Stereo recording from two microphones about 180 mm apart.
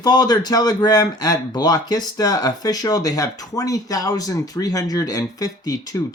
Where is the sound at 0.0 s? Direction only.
25° left (ahead or behind).